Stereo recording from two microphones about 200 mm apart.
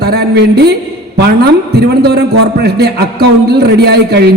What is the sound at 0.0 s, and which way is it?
A woman's voice, 55° right (ahead or behind).